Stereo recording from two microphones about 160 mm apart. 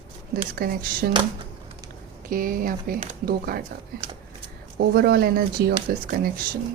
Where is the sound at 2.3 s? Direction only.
60° right (ahead or behind).